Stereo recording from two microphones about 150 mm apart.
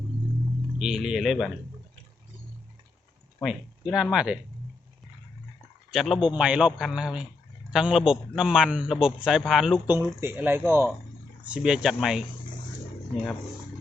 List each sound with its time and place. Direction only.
0.8 s a man's voice: 5° right (ahead or behind)
3.4 s a man's voice: centre (ahead or behind)
5.9 s a man's voice: centre (ahead or behind)
9.9 s speech: 15° right (ahead or behind)
11.4 s a man's voice: 5° right (ahead or behind)